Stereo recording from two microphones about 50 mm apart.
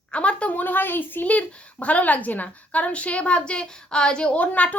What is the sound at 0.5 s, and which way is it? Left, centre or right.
Speech, left.